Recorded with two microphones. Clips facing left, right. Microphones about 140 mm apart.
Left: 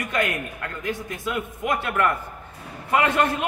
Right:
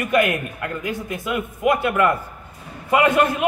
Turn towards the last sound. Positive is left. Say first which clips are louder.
# right 4 dB
turn(degrees=-10)  # may be behind; listen again after turning